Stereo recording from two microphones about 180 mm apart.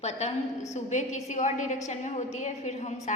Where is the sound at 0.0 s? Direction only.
40° left (ahead or behind).